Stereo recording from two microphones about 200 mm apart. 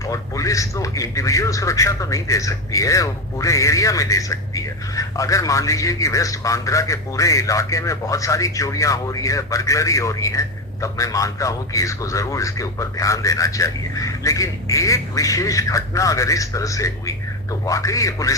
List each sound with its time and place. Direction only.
0.1 s a man's voice: 15° left (ahead or behind)